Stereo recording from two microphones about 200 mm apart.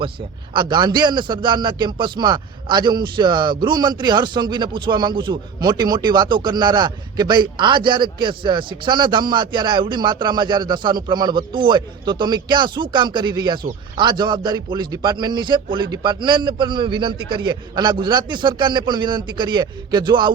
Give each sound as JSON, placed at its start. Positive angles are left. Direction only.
{"t": 0.5, "sound": "speech", "side_deg": -25}